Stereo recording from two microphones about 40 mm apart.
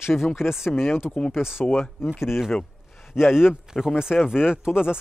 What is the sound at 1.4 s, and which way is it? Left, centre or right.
Speech, centre.